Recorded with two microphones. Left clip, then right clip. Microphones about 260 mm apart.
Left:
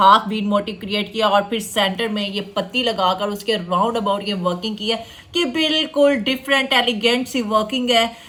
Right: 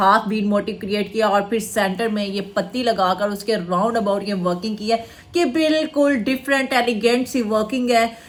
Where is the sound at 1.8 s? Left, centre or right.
Left.